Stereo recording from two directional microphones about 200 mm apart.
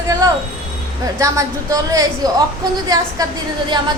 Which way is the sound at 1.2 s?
15° right (ahead or behind).